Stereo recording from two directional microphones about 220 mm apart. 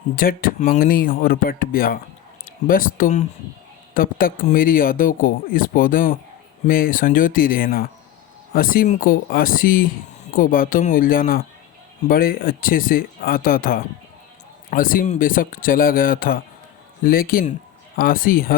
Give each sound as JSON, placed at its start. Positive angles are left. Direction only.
{"t": 0.2, "sound": "speech", "side_deg": 40}